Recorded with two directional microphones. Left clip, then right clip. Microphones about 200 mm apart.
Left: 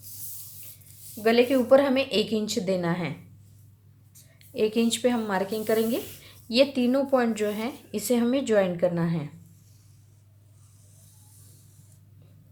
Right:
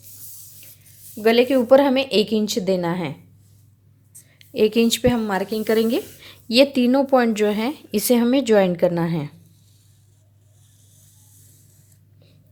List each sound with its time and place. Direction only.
1.1 s a woman's voice: 45° right (ahead or behind)
4.4 s speech: 45° right (ahead or behind)